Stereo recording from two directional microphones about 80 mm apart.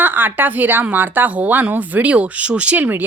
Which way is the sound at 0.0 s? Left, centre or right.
Right.